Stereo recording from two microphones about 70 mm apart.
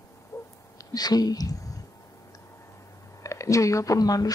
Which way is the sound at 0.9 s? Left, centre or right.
Left.